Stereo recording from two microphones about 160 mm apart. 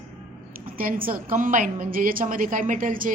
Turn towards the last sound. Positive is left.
turn(degrees=-55)  # may be behind; listen again after turning